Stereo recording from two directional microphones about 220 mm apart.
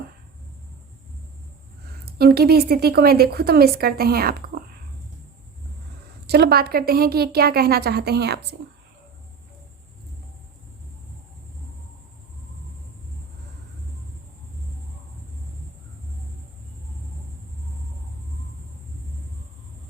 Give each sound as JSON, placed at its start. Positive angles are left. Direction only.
{"t": 2.0, "sound": "speech", "side_deg": -45}
{"t": 6.2, "sound": "speech", "side_deg": -45}